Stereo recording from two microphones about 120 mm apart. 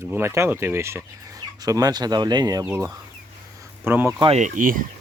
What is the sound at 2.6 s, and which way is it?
Speech, 15° right (ahead or behind).